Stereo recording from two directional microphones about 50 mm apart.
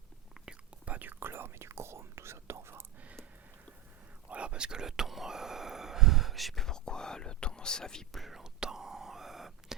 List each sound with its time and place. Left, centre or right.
0.4 s whispering: right
1.0 s whispering: right
4.3 s whispering: right; by 8.2 s centre
8.2 s whispering: centre